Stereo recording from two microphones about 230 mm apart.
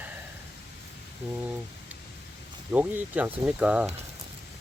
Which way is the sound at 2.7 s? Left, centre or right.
Centre.